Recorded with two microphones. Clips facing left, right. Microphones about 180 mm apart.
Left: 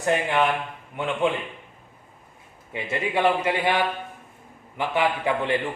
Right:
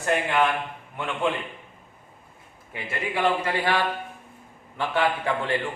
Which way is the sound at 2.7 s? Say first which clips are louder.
Left 4 dB; 25° left (ahead or behind).